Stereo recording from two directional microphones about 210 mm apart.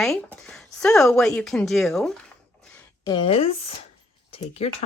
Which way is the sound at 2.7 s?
15° left (ahead or behind).